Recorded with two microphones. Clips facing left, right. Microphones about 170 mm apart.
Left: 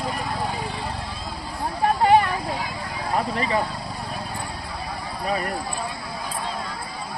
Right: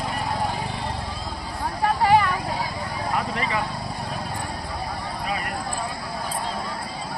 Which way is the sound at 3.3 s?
35° left (ahead or behind).